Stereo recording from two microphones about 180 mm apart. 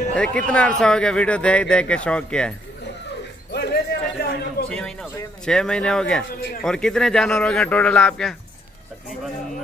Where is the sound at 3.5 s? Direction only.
65° left (ahead or behind).